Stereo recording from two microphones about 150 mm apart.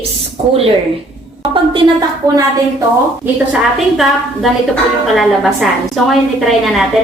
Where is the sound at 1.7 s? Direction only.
25° right (ahead or behind).